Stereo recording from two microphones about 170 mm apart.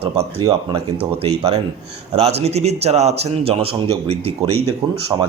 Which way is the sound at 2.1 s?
40° right (ahead or behind).